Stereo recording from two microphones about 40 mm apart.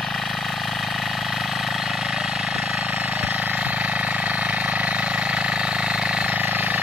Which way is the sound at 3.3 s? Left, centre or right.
Right.